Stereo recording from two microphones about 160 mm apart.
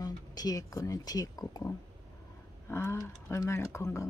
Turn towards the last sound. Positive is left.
turn(degrees=20)  # may be behind; listen again after turning